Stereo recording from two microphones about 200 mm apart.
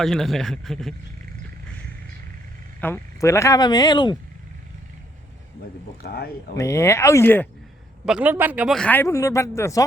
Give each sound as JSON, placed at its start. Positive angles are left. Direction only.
{"t": 0.0, "sound": "speech", "side_deg": 0}
{"t": 2.8, "sound": "speech", "side_deg": 10}
{"t": 6.0, "sound": "speech", "side_deg": 50}
{"t": 6.6, "sound": "speech", "side_deg": 15}
{"t": 8.0, "sound": "speech", "side_deg": -5}